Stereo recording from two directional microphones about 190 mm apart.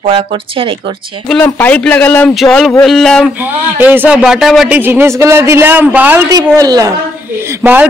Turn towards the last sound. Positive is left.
turn(degrees=-10)  # may be behind; listen again after turning